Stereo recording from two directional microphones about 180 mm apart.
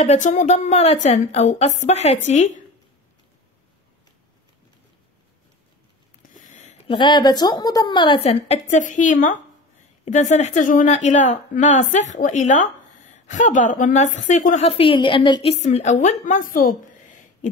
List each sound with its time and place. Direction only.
0.0 s a woman's voice: 45° left (ahead or behind)
6.3 s a sound: 40° left (ahead or behind)
7.0 s a woman's voice: 25° left (ahead or behind); by 14.7 s 45° left (ahead or behind)
14.7 s a woman's voice: 30° left (ahead or behind); by 17.5 s 45° left (ahead or behind)